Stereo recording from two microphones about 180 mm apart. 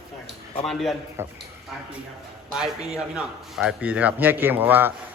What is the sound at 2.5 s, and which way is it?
A man's voice, centre (ahead or behind).